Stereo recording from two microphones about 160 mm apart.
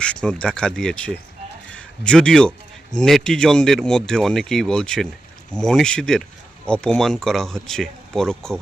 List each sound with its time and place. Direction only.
0.0 s a man's voice: 5° left (ahead or behind)